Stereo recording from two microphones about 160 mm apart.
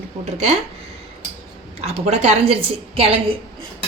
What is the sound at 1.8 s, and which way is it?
A woman's voice, 40° right (ahead or behind).